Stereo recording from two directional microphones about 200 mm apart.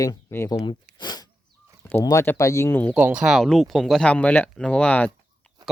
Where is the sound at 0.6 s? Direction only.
20° left (ahead or behind).